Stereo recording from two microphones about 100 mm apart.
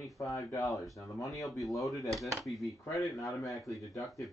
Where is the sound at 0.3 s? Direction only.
35° left (ahead or behind).